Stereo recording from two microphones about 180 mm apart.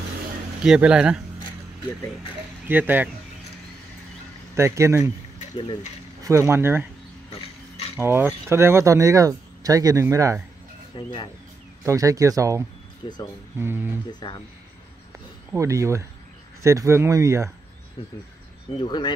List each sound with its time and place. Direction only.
0.7 s speech: 5° right (ahead or behind)
2.7 s speech: 10° right (ahead or behind)
4.6 s speech: 15° right (ahead or behind)
6.2 s speech: 15° right (ahead or behind)
7.9 s speech: 15° right (ahead or behind)
11.0 s speech: 25° left (ahead or behind)
11.8 s speech: 15° right (ahead or behind)
13.0 s speech: 25° left (ahead or behind)
13.6 s speech: 15° right (ahead or behind)
15.5 s speech: 15° right (ahead or behind)
18.8 s speech: 25° left (ahead or behind)